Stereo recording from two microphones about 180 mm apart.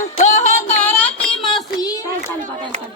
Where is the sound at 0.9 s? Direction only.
10° left (ahead or behind).